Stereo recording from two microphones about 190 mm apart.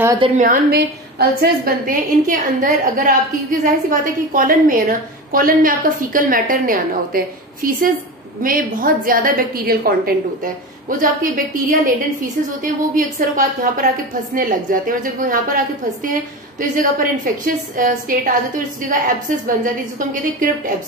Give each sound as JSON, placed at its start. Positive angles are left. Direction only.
{"t": 0.4, "sound": "a woman's voice", "side_deg": -45}